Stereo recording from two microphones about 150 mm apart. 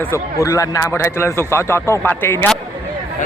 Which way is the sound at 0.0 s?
20° left (ahead or behind).